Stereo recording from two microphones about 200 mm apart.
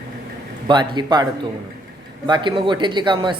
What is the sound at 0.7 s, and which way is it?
Speech, 20° right (ahead or behind).